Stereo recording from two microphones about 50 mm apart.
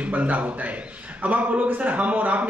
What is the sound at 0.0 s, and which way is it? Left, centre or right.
A man's voice, right.